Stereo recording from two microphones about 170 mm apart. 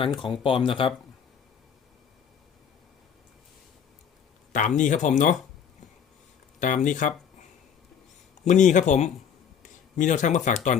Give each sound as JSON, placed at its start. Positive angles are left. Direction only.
{"t": 0.0, "sound": "speech", "side_deg": 30}
{"t": 4.5, "sound": "speech", "side_deg": 50}
{"t": 6.6, "sound": "speech", "side_deg": 50}
{"t": 8.4, "sound": "speech", "side_deg": 45}